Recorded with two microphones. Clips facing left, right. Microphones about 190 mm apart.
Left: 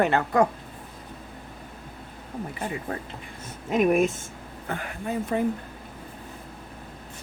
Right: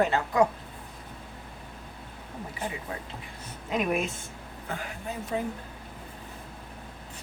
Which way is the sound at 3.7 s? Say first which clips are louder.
Left 7 dB; 50° left (ahead or behind).